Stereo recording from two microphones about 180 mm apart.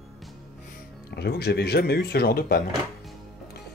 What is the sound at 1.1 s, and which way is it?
Speech, 65° left (ahead or behind).